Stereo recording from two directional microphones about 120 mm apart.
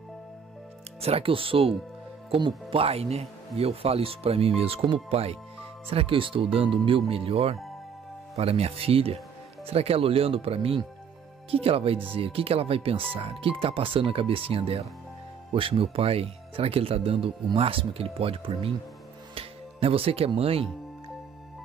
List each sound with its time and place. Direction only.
1.0 s speech: 50° right (ahead or behind)
19.3 s music: 50° right (ahead or behind)
20.3 s speech: 55° right (ahead or behind)